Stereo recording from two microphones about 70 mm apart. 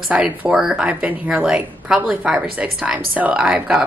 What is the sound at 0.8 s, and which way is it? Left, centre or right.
A woman's voice, centre.